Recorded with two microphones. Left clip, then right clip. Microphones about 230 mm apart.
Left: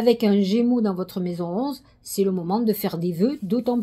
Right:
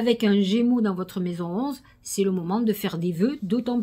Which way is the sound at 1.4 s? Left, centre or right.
Right.